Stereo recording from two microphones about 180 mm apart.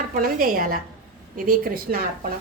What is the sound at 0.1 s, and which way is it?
Speech, 50° right (ahead or behind).